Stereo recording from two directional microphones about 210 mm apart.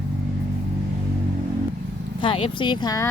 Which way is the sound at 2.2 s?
25° left (ahead or behind).